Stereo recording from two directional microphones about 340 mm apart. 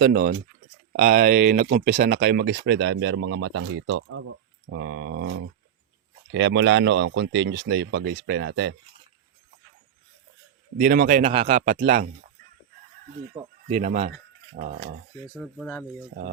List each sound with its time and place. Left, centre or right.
0.0 s speech: right
10.8 s speech: right
13.3 s speech: centre
15.4 s speech: centre